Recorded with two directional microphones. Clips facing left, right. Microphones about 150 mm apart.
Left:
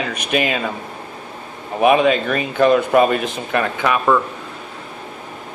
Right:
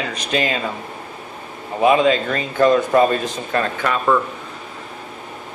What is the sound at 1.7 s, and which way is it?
Speech, 15° left (ahead or behind).